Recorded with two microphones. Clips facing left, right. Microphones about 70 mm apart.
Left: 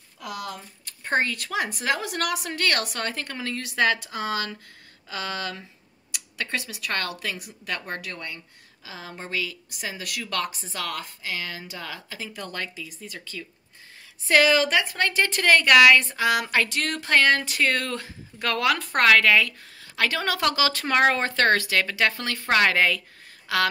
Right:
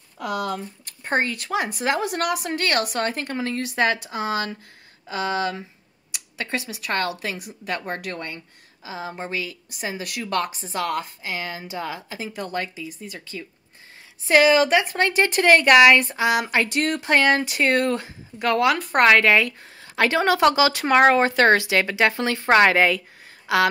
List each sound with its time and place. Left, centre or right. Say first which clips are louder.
1.0 s speech: right 1 dB; centre
2.0 s speech: right 4 dB; right
8.0 s speech: right 4 dB; right
8.8 s speech: right 7 dB; centre